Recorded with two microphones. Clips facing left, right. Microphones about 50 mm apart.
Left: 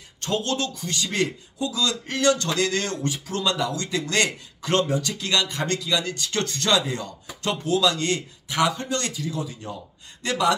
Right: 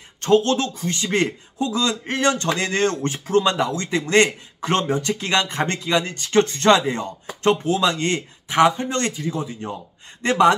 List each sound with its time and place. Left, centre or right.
0.2 s speech: right